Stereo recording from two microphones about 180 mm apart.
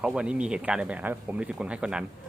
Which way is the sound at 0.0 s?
5° right (ahead or behind).